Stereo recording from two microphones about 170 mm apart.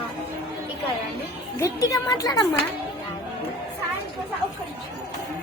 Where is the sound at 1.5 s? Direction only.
20° left (ahead or behind).